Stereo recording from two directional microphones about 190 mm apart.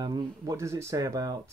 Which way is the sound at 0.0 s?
20° right (ahead or behind).